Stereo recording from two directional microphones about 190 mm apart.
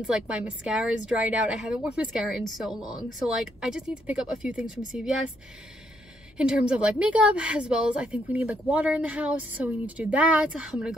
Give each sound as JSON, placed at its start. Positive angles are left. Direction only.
{"t": 0.0, "sound": "a woman's voice", "side_deg": -5}
{"t": 2.8, "sound": "speech", "side_deg": 20}
{"t": 3.1, "sound": "a woman's voice", "side_deg": 0}
{"t": 6.3, "sound": "a woman's voice", "side_deg": -5}